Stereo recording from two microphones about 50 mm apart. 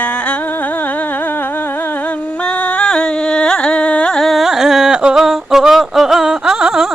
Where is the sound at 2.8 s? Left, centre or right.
Centre.